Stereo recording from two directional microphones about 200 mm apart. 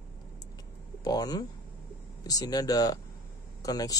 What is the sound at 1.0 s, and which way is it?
Speech, 20° left (ahead or behind).